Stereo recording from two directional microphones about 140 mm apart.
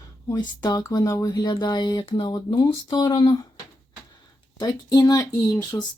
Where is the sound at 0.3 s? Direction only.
30° left (ahead or behind).